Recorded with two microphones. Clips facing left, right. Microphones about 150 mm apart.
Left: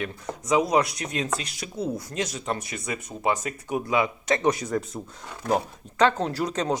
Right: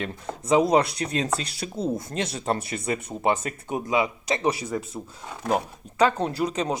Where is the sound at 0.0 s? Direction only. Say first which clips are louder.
Even; 25° right (ahead or behind).